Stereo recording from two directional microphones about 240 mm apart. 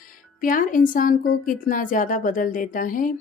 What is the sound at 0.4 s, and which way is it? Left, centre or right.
A woman's voice, left.